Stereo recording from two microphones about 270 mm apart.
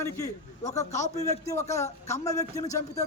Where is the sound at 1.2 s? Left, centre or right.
Centre.